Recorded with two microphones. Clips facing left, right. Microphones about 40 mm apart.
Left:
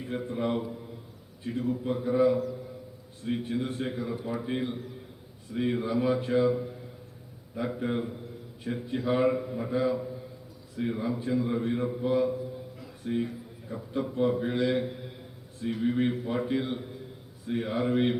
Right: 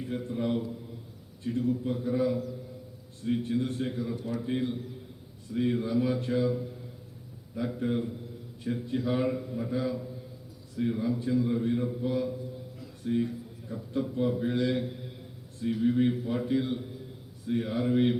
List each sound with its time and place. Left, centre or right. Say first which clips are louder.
0.0 s a man's voice: left 1 dB; centre
11.6 s a sound: even; centre
14.2 s a man's voice: left 2 dB; centre